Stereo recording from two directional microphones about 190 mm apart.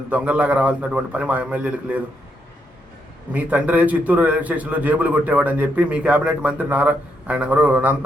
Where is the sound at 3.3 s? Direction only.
10° right (ahead or behind).